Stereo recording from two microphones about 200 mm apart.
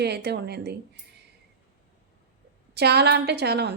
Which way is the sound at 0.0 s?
55° right (ahead or behind).